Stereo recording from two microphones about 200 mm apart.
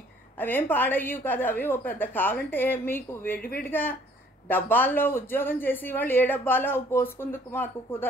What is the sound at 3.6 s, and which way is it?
Speech, 10° left (ahead or behind).